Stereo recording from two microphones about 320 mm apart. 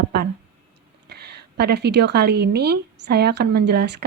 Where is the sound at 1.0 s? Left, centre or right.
Right.